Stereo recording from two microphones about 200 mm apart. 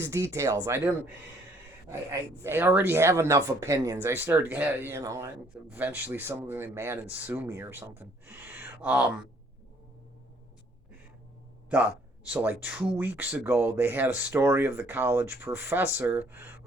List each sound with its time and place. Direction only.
0.0 s speech: 15° right (ahead or behind)
1.9 s speech: 15° right (ahead or behind)
12.3 s speech: 5° right (ahead or behind)